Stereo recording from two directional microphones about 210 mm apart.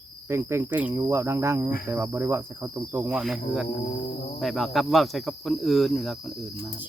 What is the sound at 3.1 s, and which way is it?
Cricket, centre (ahead or behind).